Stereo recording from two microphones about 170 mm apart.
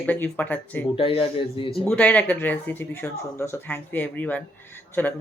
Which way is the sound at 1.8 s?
5° left (ahead or behind).